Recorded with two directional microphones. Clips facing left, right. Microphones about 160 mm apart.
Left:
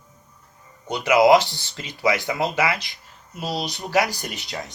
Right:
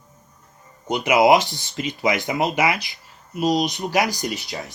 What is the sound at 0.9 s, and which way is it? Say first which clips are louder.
Speech: even; 20° right (ahead or behind).